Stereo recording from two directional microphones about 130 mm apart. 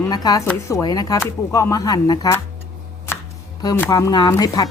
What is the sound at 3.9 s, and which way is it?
Speech, 30° left (ahead or behind).